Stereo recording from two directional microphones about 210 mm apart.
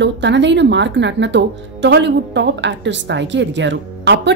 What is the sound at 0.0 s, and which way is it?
Speech, 55° right (ahead or behind).